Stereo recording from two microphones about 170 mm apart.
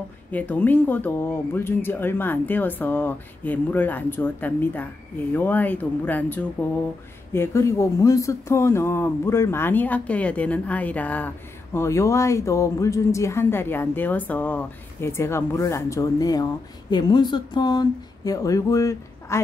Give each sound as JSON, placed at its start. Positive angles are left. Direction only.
{"t": 0.3, "sound": "speech", "side_deg": 10}